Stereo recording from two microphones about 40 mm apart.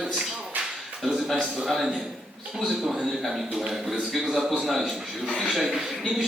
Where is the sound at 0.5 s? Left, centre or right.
Right.